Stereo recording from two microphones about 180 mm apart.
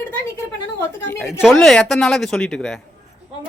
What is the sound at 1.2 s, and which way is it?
Speech, 5° right (ahead or behind).